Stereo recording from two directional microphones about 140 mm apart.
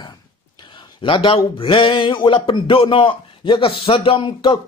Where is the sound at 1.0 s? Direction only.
35° left (ahead or behind).